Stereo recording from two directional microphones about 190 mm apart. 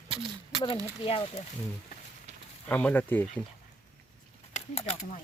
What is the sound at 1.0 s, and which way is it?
Speech, 30° left (ahead or behind).